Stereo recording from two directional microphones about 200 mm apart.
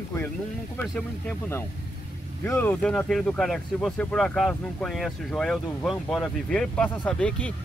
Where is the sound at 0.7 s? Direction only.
10° left (ahead or behind).